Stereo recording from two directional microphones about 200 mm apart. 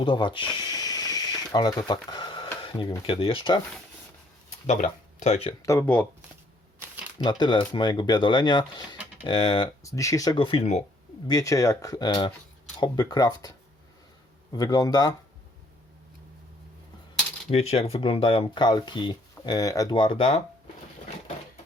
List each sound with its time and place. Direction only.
0.0 s a sound: 25° left (ahead or behind)
2.6 s speech: 25° left (ahead or behind)
4.6 s speech: 35° left (ahead or behind)
5.6 s speech: 10° left (ahead or behind)
7.2 s speech: 20° left (ahead or behind)
11.3 s speech: 15° left (ahead or behind)
14.5 s speech: 20° left (ahead or behind)
17.5 s speech: 30° left (ahead or behind)